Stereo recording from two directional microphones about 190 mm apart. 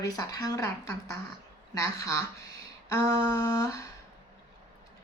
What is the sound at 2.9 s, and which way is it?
Speech, 15° left (ahead or behind).